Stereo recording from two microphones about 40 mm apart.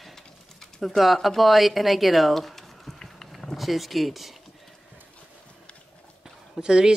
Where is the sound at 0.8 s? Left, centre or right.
Centre.